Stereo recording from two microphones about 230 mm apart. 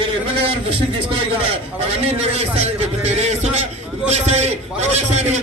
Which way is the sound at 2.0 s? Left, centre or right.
Right.